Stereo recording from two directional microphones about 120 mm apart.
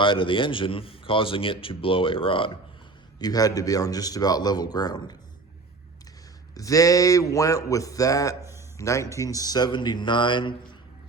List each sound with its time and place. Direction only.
0.0 s a man's voice: 45° left (ahead or behind)
3.2 s speech: 30° left (ahead or behind)
6.5 s speech: 30° left (ahead or behind)
8.4 s a sound: 20° right (ahead or behind)
8.8 s speech: 25° left (ahead or behind); by 10.8 s 40° left (ahead or behind)